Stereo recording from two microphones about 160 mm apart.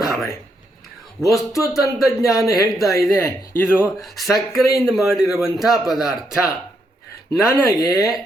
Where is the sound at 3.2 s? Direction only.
15° left (ahead or behind).